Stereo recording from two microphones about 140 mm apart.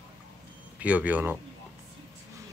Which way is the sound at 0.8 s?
10° right (ahead or behind).